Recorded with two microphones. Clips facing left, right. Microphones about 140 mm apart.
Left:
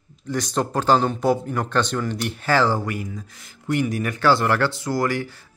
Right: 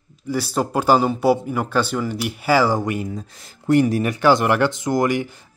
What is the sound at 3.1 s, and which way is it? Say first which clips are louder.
Speech: right 5 dB; 35° right (ahead or behind).